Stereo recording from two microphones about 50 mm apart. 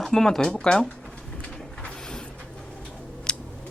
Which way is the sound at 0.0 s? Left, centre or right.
Centre.